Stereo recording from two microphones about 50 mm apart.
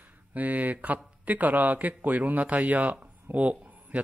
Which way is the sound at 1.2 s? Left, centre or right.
Right.